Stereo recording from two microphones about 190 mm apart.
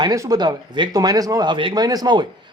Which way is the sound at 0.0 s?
20° right (ahead or behind).